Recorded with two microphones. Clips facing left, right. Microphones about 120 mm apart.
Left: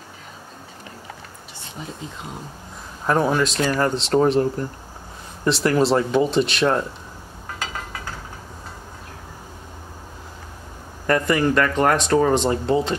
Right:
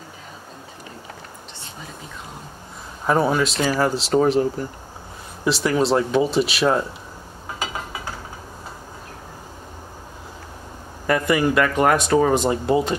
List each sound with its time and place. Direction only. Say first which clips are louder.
3.1 s speech: even; centre (ahead or behind)
7.5 s a sound: right 2 dB; 10° right (ahead or behind)
11.1 s speech: even; 5° right (ahead or behind)